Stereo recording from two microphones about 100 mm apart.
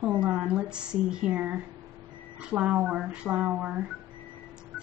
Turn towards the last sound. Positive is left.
turn(degrees=-15)  # may be behind; listen again after turning